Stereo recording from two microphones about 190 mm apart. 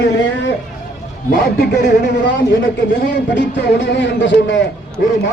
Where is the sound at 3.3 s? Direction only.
65° left (ahead or behind).